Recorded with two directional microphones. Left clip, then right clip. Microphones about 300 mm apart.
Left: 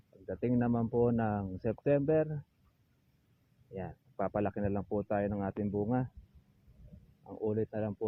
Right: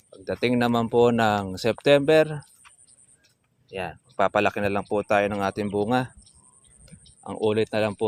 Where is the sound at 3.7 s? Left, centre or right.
Centre.